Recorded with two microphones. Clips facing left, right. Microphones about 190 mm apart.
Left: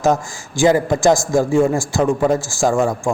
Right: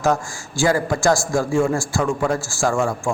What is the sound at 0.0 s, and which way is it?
A man's voice, 20° left (ahead or behind).